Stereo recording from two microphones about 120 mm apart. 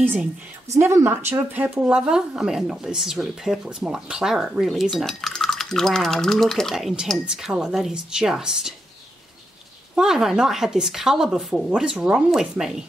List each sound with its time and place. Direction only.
0.0 s a woman's voice: 15° right (ahead or behind)
9.9 s speech: 5° right (ahead or behind)